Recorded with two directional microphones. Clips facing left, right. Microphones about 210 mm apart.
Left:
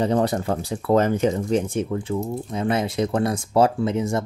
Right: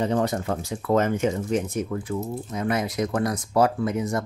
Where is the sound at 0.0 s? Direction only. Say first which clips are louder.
Left 3 dB; 35° left (ahead or behind).